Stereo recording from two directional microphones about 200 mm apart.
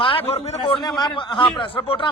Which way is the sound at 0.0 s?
25° left (ahead or behind).